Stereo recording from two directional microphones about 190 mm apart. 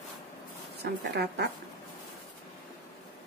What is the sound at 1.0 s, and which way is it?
Speech, 60° right (ahead or behind).